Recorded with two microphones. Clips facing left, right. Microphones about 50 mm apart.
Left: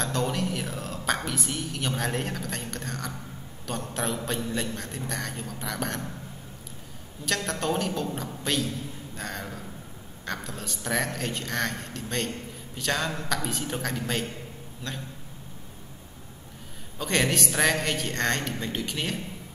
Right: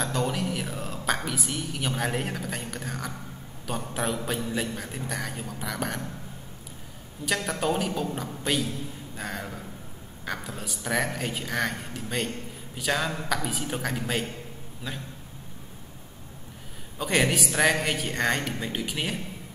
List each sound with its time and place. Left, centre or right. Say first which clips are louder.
0.0 s a woman's voice: even; centre
7.2 s a man's voice: right 1 dB; centre
17.0 s a man's voice: right 1 dB; centre